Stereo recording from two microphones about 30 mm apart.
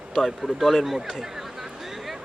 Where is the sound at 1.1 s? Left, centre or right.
Centre.